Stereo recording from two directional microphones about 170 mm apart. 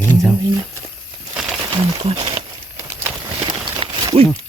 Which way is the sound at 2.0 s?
30° right (ahead or behind).